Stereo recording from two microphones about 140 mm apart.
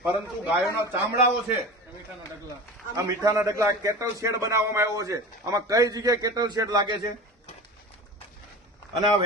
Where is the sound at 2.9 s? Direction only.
25° right (ahead or behind).